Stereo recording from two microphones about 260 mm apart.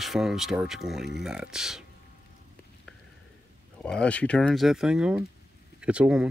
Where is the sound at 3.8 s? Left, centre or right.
Centre.